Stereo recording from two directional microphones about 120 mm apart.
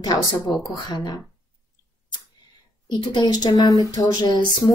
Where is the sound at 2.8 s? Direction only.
40° left (ahead or behind).